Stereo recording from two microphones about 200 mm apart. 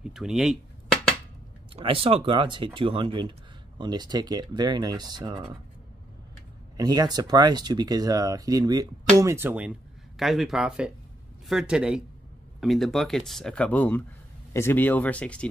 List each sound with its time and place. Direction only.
0.0 s speech: centre (ahead or behind)
1.8 s speech: 30° right (ahead or behind)
6.8 s speech: 20° right (ahead or behind); by 15.4 s 5° left (ahead or behind)